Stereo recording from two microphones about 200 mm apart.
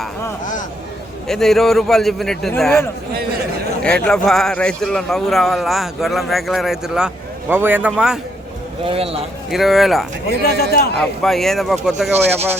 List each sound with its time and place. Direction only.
1.3 s a man's voice: centre (ahead or behind)
8.8 s speech: 30° right (ahead or behind)
9.5 s a man's voice: centre (ahead or behind)
10.4 s a man's voice: 50° left (ahead or behind)
10.9 s a man's voice: 5° left (ahead or behind)